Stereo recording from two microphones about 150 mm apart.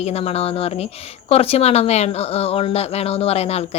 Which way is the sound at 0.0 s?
45° left (ahead or behind).